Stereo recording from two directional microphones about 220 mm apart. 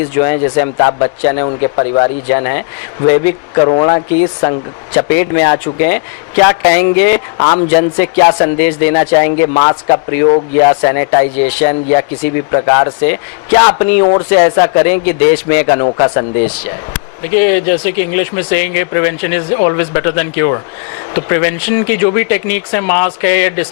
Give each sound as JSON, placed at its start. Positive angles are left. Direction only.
{"t": 0.1, "sound": "speech", "side_deg": 15}
{"t": 1.7, "sound": "speech", "side_deg": 30}
{"t": 2.3, "sound": "speech", "side_deg": 15}
{"t": 3.6, "sound": "speech", "side_deg": 25}
{"t": 5.2, "sound": "speech", "side_deg": 15}
{"t": 14.0, "sound": "speech", "side_deg": 30}
{"t": 14.3, "sound": "speech", "side_deg": 15}